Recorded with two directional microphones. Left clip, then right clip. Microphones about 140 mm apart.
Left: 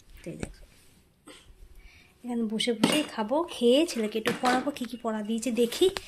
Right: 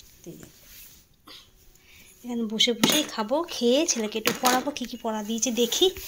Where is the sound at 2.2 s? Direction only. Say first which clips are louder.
Right 5 dB; 20° left (ahead or behind).